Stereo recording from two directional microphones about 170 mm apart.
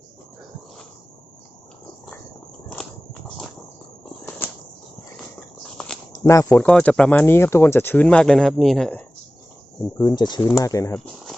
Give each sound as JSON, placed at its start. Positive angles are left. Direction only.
{"t": 4.4, "sound": "cricket", "side_deg": 10}
{"t": 6.1, "sound": "speech", "side_deg": 20}
{"t": 6.5, "sound": "speech", "side_deg": 5}
{"t": 10.0, "sound": "speech", "side_deg": 25}
{"t": 10.9, "sound": "a sound", "side_deg": 5}